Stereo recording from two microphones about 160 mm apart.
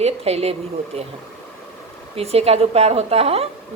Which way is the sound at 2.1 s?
40° right (ahead or behind).